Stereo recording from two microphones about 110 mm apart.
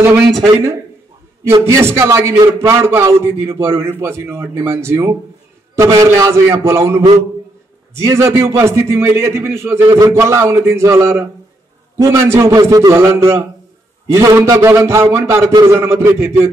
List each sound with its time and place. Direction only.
1.4 s a man's voice: 25° right (ahead or behind)
9.8 s music: 35° right (ahead or behind)
10.1 s a man's voice: 25° right (ahead or behind)